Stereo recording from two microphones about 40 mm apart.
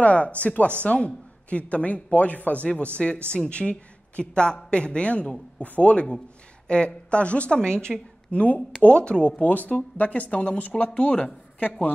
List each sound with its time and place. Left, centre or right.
0.0 s a man's voice: left
6.7 s a man's voice: left
7.6 s a man's voice: centre
8.3 s a man's voice: left
9.4 s speech: left